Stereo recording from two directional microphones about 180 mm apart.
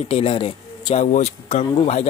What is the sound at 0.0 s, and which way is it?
Speech, 30° left (ahead or behind).